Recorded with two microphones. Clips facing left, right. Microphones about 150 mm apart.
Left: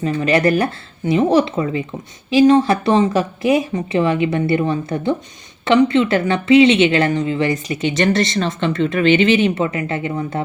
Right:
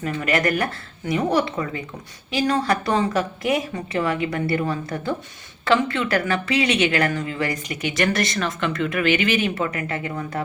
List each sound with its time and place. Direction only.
0.0 s speech: 25° left (ahead or behind)